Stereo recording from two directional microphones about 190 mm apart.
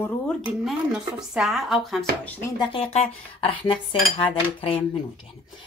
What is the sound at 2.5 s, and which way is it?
A woman's voice, 30° left (ahead or behind).